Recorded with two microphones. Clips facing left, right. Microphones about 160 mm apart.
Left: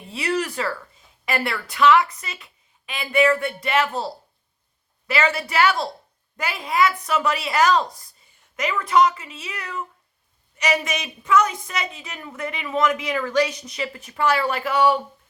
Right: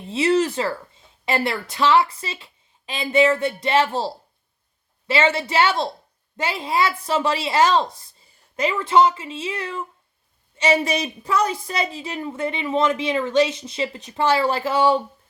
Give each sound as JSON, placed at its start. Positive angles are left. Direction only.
{"t": 0.1, "sound": "a woman's voice", "side_deg": -25}